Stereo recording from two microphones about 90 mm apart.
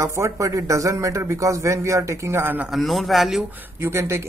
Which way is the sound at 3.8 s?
30° right (ahead or behind).